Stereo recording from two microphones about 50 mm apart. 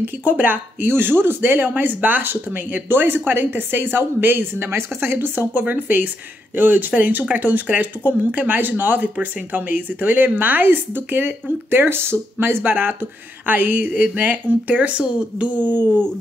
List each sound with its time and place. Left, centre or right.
0.0 s speech: right
15.7 s speech: right